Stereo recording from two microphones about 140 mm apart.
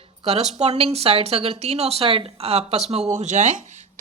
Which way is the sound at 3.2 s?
60° right (ahead or behind).